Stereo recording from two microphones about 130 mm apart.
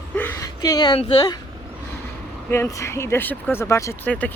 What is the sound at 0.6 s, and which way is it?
Speech, 30° left (ahead or behind).